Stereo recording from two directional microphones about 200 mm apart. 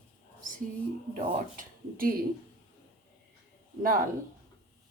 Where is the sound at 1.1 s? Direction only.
45° right (ahead or behind).